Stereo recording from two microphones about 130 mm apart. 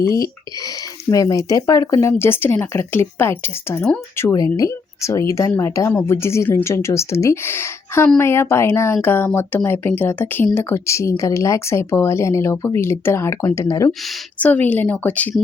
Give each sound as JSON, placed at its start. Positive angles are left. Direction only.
{"t": 0.0, "sound": "speech", "side_deg": 25}
{"t": 14.4, "sound": "speech", "side_deg": 10}